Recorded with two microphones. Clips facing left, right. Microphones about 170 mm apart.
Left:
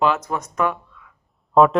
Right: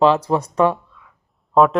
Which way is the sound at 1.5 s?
Centre (ahead or behind).